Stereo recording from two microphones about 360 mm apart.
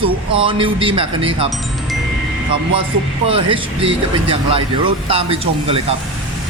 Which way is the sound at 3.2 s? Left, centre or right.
Centre.